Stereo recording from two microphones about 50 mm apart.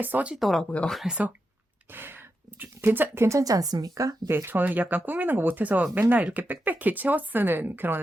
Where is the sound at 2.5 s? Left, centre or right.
Right.